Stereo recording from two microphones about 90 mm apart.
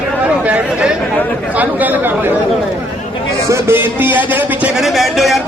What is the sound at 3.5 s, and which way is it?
A man's voice, 25° right (ahead or behind).